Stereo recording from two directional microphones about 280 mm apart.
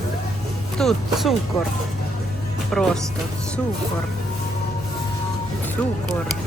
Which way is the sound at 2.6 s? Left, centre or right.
Centre.